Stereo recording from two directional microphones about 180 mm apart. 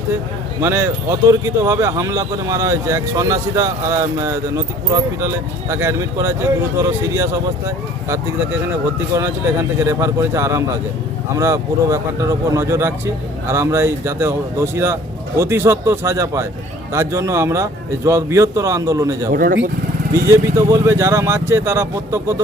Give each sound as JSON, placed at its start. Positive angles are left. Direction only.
{"t": 0.6, "sound": "speech", "side_deg": -15}
{"t": 9.8, "sound": "speech", "side_deg": -15}
{"t": 19.3, "sound": "speech", "side_deg": -50}
{"t": 20.2, "sound": "speech", "side_deg": -15}